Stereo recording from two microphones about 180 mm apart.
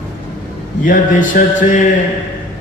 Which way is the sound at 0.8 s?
45° left (ahead or behind).